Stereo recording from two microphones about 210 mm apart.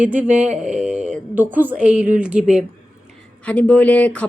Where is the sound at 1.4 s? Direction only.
10° right (ahead or behind).